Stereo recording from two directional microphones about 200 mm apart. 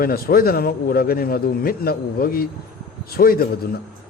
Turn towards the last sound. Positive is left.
turn(degrees=45)  # may be behind; listen again after turning